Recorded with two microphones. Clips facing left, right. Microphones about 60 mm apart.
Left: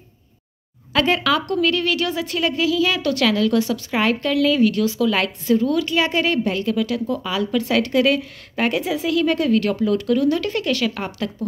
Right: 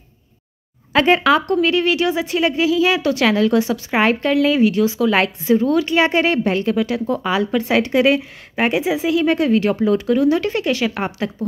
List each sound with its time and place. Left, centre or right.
0.9 s a woman's voice: right